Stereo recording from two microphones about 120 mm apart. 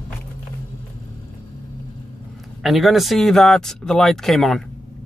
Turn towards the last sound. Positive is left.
turn(degrees=5)  # may be behind; listen again after turning